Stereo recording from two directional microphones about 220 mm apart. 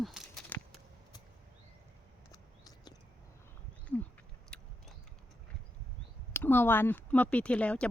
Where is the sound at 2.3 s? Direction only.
15° left (ahead or behind).